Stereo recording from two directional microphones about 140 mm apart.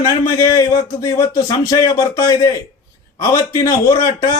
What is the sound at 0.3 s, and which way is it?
A man's voice, 20° left (ahead or behind).